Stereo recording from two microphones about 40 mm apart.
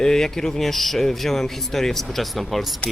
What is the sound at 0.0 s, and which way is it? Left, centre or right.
Speech, centre.